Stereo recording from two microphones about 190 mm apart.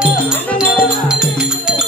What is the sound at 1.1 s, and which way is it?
Music, 5° right (ahead or behind).